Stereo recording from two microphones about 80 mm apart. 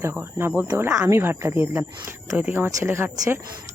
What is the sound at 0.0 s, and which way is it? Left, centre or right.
Speech, right.